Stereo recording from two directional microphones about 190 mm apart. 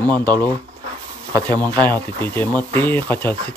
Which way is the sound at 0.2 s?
10° left (ahead or behind).